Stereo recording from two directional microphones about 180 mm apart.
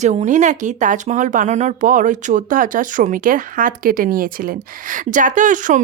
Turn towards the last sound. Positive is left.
turn(degrees=-45)  # may be behind; listen again after turning